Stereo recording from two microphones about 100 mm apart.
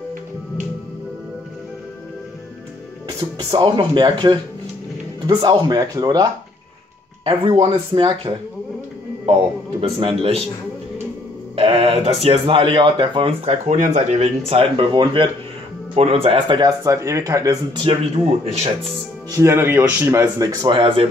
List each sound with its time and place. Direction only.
3.3 s speech: 50° right (ahead or behind)
7.2 s speech: 65° right (ahead or behind)
9.2 s speech: 70° right (ahead or behind)
11.5 s speech: 75° right (ahead or behind); by 13.3 s 55° right (ahead or behind)
14.1 s speech: 85° right
14.9 s speech: 55° right (ahead or behind)
15.9 s speech: 80° right; by 16.6 s 55° right (ahead or behind)
16.6 s speech: 30° right (ahead or behind)
17.8 s speech: 75° right (ahead or behind)
19.3 s a man's voice: 25° right (ahead or behind)
20.1 s speech: 35° right (ahead or behind)
20.7 s speech: 65° right (ahead or behind)